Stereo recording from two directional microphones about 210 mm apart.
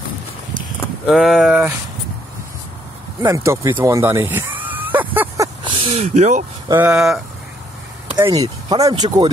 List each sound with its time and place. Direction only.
1.0 s speech: centre (ahead or behind)
3.2 s a sound: 15° right (ahead or behind)
5.6 s speech: 25° right (ahead or behind)
6.7 s speech: 5° right (ahead or behind)
8.2 s speech: 15° right (ahead or behind)